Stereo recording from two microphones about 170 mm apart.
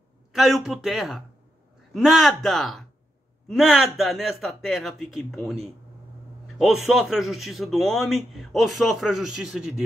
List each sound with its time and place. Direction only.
0.3 s a man's voice: centre (ahead or behind)